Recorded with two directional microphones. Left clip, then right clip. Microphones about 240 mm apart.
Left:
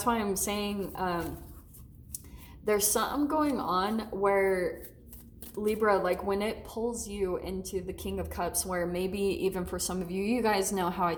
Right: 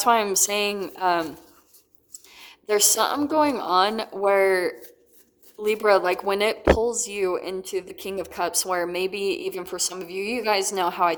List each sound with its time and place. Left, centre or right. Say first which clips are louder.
0.0 s speech: right 10 dB; right
2.4 s speech: right 6 dB; right